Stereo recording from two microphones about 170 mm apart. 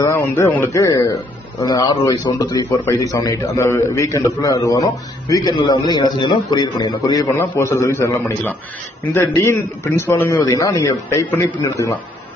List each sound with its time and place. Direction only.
0.0 s a man's voice: 15° left (ahead or behind)